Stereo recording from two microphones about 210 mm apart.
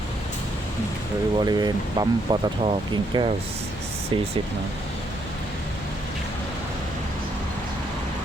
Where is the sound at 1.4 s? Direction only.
20° right (ahead or behind).